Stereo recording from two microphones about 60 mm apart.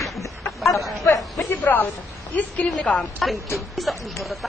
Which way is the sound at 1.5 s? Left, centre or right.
Left.